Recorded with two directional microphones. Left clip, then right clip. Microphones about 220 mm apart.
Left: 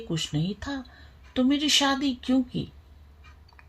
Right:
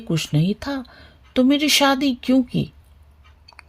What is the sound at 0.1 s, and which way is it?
Speech, 50° right (ahead or behind).